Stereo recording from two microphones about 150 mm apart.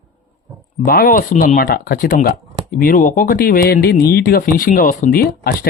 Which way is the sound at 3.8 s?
90° left.